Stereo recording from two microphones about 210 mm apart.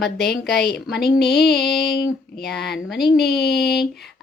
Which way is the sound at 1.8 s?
50° left (ahead or behind).